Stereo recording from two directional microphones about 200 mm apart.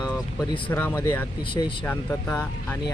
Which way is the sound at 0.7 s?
10° left (ahead or behind).